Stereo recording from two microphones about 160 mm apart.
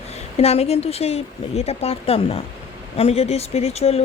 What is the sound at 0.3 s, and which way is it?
Speech, 40° left (ahead or behind).